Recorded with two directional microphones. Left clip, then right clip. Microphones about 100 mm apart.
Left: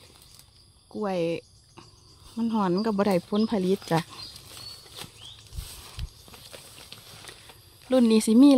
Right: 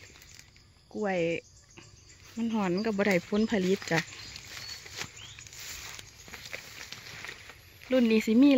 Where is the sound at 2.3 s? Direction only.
50° left (ahead or behind).